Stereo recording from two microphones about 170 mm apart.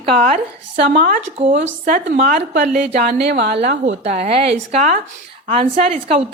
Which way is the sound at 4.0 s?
40° right (ahead or behind).